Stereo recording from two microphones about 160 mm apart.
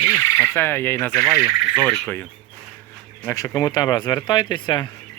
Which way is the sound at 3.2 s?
20° left (ahead or behind).